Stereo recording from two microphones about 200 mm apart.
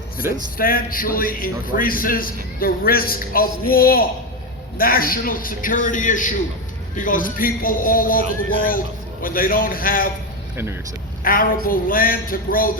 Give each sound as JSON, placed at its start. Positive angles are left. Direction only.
{"t": 0.5, "sound": "a man's voice", "side_deg": 45}
{"t": 11.2, "sound": "a man's voice", "side_deg": 45}